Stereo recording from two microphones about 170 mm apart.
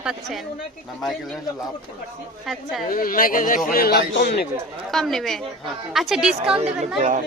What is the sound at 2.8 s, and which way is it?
A man's voice, 55° left (ahead or behind).